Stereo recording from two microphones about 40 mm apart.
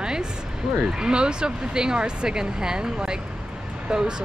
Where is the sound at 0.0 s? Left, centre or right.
Centre.